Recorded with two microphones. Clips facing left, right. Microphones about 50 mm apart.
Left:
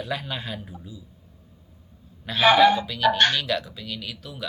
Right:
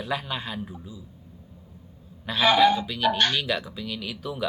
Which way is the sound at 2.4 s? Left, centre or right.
Left.